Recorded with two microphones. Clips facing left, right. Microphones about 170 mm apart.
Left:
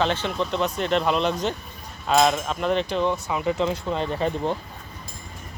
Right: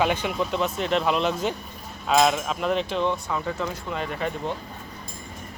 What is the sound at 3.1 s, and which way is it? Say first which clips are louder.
Speech: left 4 dB; 20° left (ahead or behind).